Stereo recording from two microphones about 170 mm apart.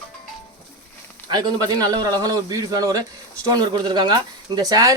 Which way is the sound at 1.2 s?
25° right (ahead or behind).